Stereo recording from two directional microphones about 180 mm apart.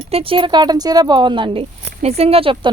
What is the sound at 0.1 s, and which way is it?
Speech, 30° right (ahead or behind).